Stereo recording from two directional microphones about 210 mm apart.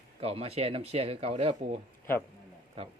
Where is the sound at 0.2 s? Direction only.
30° right (ahead or behind).